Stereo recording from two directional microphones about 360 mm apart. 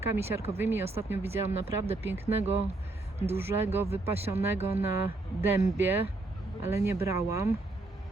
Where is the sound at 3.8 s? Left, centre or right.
Centre.